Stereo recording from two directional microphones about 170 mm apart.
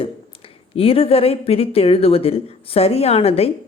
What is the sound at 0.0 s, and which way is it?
A woman's voice, 35° left (ahead or behind).